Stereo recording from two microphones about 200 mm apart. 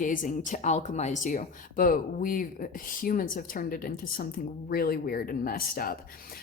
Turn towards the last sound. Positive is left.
turn(degrees=45)  # may be behind; listen again after turning